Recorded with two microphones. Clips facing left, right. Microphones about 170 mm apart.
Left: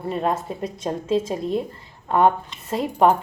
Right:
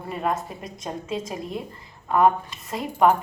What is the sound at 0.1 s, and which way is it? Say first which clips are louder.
A woman's voice: left 3 dB; 30° left (ahead or behind).